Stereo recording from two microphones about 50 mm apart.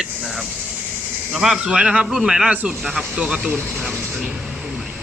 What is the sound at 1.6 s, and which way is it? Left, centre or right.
Speech, centre.